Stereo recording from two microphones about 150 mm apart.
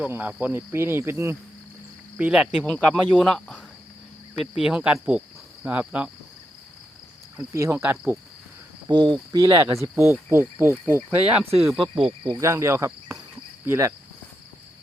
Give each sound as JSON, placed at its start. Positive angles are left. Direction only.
{"t": 0.0, "sound": "speech", "side_deg": -10}
{"t": 7.5, "sound": "speech", "side_deg": -20}
{"t": 8.9, "sound": "speech", "side_deg": -30}
{"t": 11.8, "sound": "speech", "side_deg": -35}
{"t": 12.4, "sound": "cricket", "side_deg": -20}
{"t": 13.7, "sound": "speech", "side_deg": -20}